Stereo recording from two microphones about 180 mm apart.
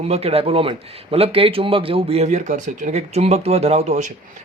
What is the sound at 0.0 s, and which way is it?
A man's voice, 35° right (ahead or behind).